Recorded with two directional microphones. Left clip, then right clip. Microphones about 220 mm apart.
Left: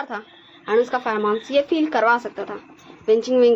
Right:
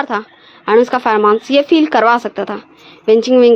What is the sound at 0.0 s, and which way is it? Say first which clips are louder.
A woman's voice: right 11 dB; 50° right (ahead or behind).